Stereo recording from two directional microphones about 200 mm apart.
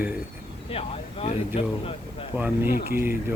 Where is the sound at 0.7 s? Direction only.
30° left (ahead or behind).